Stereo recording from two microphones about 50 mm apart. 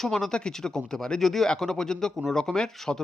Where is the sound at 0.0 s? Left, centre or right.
Centre.